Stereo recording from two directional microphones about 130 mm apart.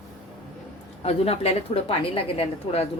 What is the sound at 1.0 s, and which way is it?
A woman's voice, 50° left (ahead or behind).